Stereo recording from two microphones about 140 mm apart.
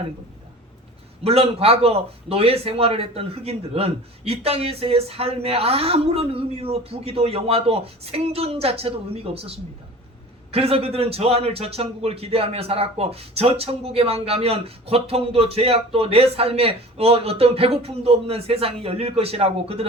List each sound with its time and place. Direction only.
1.2 s a man's voice: 45° right (ahead or behind)